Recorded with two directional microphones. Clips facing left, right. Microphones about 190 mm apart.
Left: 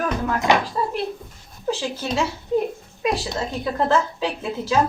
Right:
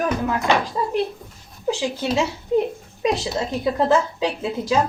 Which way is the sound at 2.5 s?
20° right (ahead or behind).